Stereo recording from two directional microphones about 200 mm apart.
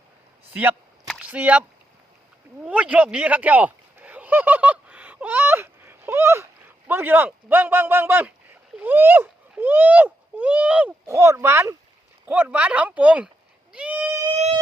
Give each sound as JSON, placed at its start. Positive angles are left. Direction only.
{"t": 1.2, "sound": "speech", "side_deg": -5}
{"t": 2.6, "sound": "speech", "side_deg": -5}
{"t": 13.7, "sound": "a sound", "side_deg": -5}
{"t": 14.2, "sound": "siren", "side_deg": -30}